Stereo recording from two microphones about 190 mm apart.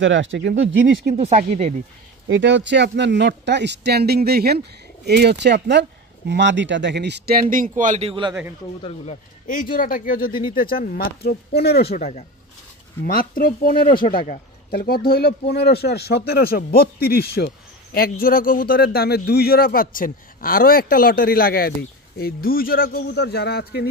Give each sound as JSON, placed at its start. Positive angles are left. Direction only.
{"t": 0.0, "sound": "speech", "side_deg": -80}
{"t": 1.1, "sound": "speech", "side_deg": -35}
{"t": 2.2, "sound": "speech", "side_deg": -75}
{"t": 8.1, "sound": "a man's voice", "side_deg": -25}
{"t": 8.8, "sound": "speech", "side_deg": 35}
{"t": 9.5, "sound": "speech", "side_deg": 45}